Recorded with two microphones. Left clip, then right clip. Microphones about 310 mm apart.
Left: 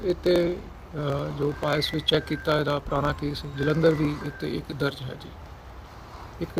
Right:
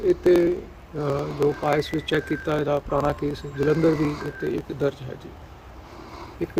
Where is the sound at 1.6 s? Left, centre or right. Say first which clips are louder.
Right 2 dB; centre.